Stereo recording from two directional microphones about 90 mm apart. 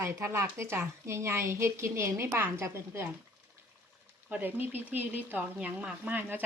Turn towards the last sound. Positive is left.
turn(degrees=-20)  # may be behind; listen again after turning